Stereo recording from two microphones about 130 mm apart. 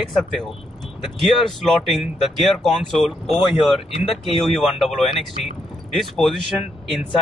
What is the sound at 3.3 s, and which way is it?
Speech, 45° left (ahead or behind).